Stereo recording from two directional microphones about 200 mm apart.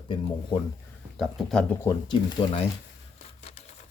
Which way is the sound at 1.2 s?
Centre (ahead or behind).